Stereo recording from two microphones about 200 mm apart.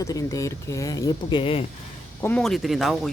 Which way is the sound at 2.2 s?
5° left (ahead or behind).